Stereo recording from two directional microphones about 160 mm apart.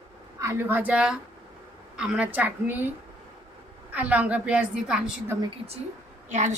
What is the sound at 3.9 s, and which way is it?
A woman's voice, 10° right (ahead or behind).